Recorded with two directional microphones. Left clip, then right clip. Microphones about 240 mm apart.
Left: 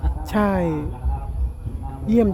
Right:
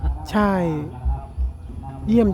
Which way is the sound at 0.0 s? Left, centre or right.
Centre.